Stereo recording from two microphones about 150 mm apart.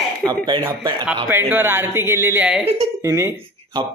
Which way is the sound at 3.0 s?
20° right (ahead or behind).